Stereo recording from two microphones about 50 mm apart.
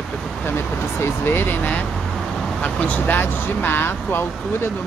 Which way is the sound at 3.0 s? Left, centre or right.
Left.